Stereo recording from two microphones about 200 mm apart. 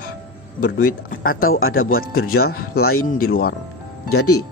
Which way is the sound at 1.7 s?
45° left (ahead or behind).